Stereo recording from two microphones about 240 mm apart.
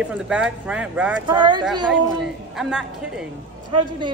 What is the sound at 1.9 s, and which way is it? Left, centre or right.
Speech, centre.